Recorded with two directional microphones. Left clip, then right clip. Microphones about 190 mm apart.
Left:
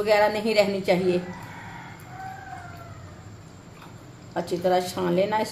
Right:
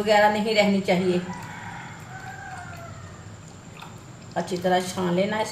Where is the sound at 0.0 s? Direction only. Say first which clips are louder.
Right 2 dB; 40° left (ahead or behind).